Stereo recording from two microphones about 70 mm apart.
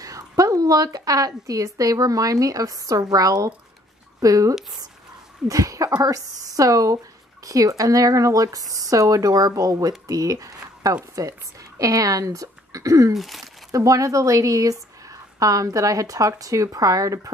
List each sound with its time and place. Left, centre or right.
0.0 s speech: right
13.1 s speech: centre
13.7 s a woman's voice: right